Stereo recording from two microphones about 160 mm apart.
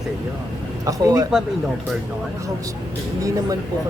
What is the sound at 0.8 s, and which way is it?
Speech, 20° right (ahead or behind).